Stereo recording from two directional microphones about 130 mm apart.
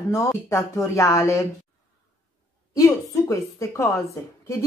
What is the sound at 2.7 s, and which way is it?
A woman's voice, 25° left (ahead or behind).